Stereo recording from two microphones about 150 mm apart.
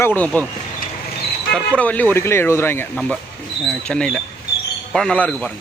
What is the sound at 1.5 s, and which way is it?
Speech, 10° left (ahead or behind).